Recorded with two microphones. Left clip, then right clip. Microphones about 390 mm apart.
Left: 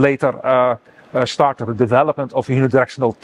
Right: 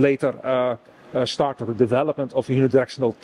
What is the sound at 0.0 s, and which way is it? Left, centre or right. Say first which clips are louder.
Speech: left 4 dB; left.